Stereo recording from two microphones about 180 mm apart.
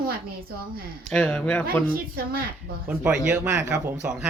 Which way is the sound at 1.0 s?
5° left (ahead or behind).